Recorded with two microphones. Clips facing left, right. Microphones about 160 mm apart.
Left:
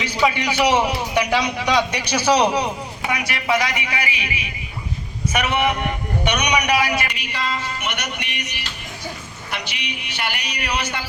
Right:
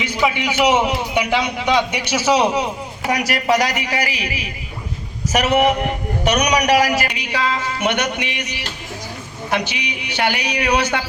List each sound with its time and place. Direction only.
0.2 s a man's voice: 5° right (ahead or behind)
3.1 s a woman's voice: 40° right (ahead or behind)
7.3 s speech: 90° right
10.2 s speech: 85° right